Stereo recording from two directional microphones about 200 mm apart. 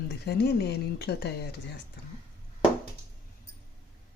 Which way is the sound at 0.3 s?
55° left (ahead or behind).